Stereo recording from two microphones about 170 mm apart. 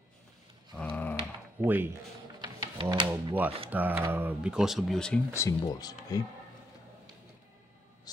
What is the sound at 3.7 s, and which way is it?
Speech, 10° right (ahead or behind).